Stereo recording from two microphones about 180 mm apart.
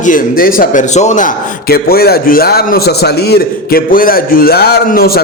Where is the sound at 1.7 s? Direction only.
60° left (ahead or behind).